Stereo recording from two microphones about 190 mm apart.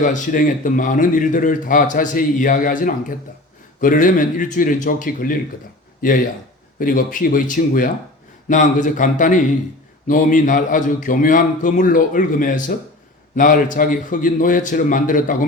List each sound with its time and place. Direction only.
0.0 s a man's voice: 40° left (ahead or behind)